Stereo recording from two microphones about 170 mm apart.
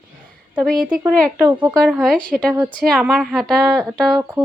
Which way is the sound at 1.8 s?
5° right (ahead or behind).